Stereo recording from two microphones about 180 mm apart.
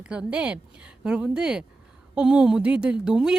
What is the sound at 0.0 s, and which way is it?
A woman's voice, 5° right (ahead or behind).